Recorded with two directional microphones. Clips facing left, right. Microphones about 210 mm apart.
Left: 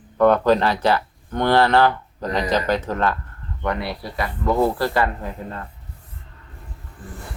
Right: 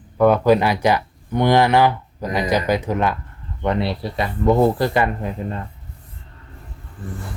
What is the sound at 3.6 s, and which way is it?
Speech, 25° right (ahead or behind).